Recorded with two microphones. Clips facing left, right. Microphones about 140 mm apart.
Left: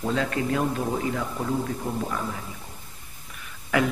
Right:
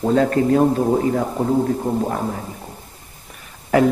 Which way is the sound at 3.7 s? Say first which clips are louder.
Right 8 dB; 40° right (ahead or behind).